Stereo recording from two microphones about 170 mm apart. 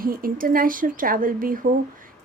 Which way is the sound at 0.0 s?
55° right (ahead or behind).